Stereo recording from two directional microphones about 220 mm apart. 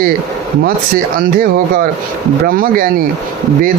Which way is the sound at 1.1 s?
40° right (ahead or behind).